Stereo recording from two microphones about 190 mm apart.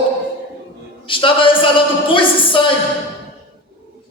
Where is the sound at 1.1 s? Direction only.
25° left (ahead or behind).